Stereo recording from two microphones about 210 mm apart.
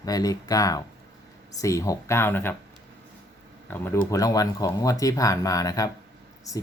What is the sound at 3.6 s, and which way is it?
Speech, 10° left (ahead or behind).